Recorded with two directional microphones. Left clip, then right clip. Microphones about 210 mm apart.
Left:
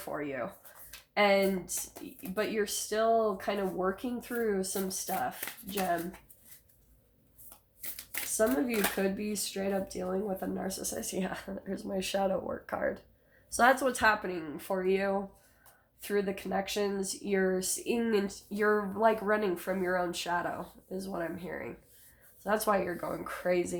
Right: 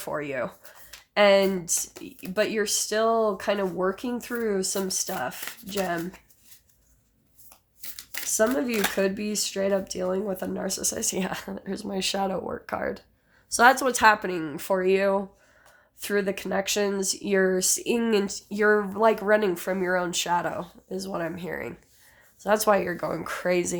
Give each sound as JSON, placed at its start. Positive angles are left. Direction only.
{"t": 0.0, "sound": "speech", "side_deg": -45}
{"t": 5.7, "sound": "speech", "side_deg": -15}
{"t": 8.4, "sound": "speech", "side_deg": -50}